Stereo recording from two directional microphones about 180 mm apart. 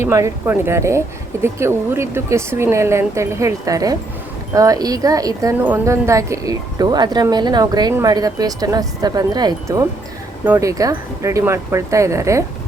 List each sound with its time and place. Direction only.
0.0 s speech: 15° right (ahead or behind)